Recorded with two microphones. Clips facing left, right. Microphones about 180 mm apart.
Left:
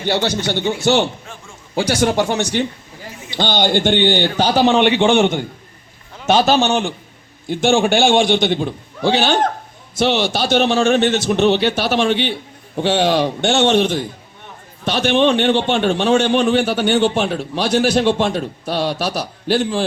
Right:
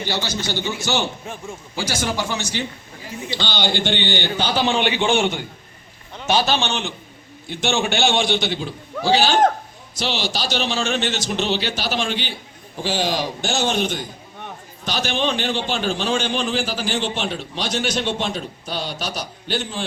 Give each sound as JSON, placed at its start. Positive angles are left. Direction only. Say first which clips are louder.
{"t": 0.1, "sound": "a man's voice", "louder": "left 9 dB", "side_deg": 60}
{"t": 13.7, "sound": "a man's voice", "louder": "left 7 dB", "side_deg": 30}
{"t": 14.8, "sound": "a man's voice", "louder": "left 8 dB", "side_deg": 70}